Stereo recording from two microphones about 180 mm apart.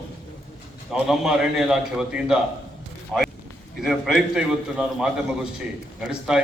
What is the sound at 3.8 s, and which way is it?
A man's voice, centre (ahead or behind).